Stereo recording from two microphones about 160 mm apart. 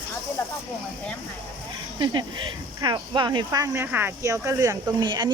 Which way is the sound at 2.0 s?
30° right (ahead or behind).